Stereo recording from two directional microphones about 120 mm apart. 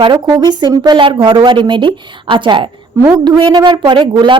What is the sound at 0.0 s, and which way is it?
A woman's voice, 40° right (ahead or behind).